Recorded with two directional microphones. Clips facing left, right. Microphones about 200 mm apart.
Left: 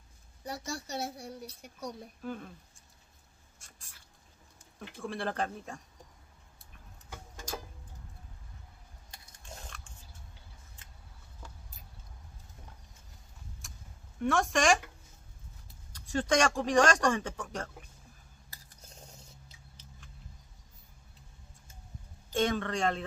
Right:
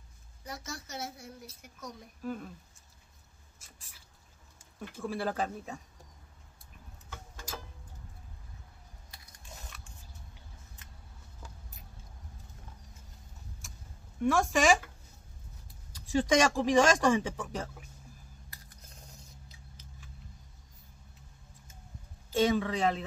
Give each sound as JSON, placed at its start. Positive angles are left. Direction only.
{"t": 0.5, "sound": "a woman's voice", "side_deg": 30}
{"t": 2.2, "sound": "speech", "side_deg": 0}
{"t": 3.5, "sound": "rodents", "side_deg": -5}
{"t": 4.9, "sound": "speech", "side_deg": -5}
{"t": 14.2, "sound": "speech", "side_deg": 0}
{"t": 15.9, "sound": "speech", "side_deg": -10}
{"t": 18.5, "sound": "a sound", "side_deg": 30}
{"t": 22.3, "sound": "speech", "side_deg": -5}